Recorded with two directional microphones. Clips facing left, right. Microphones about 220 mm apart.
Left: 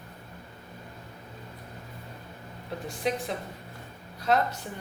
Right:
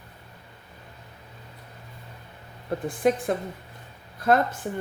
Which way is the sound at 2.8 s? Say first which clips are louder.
Right 7 dB; 50° right (ahead or behind).